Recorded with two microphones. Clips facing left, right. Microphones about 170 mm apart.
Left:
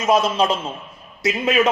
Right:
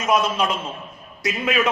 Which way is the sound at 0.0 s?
30° left (ahead or behind).